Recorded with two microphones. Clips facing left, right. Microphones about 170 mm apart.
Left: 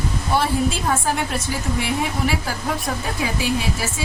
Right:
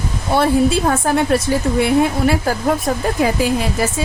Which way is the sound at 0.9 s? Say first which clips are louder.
Right 7 dB; 65° right (ahead or behind).